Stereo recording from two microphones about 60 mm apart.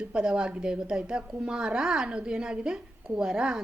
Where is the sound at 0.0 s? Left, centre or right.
Centre.